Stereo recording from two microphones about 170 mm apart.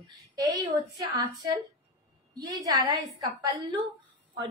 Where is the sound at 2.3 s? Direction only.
20° right (ahead or behind).